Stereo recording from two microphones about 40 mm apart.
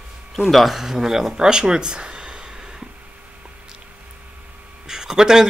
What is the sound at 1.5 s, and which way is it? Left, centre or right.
Speech, centre.